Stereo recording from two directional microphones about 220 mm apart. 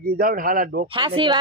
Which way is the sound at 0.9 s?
20° right (ahead or behind).